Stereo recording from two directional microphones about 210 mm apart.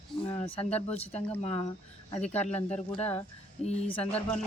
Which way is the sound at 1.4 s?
30° left (ahead or behind).